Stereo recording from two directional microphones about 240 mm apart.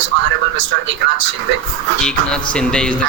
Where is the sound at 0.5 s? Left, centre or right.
Right.